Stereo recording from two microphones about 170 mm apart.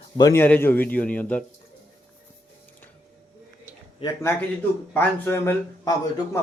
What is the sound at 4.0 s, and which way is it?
Speech, 15° left (ahead or behind).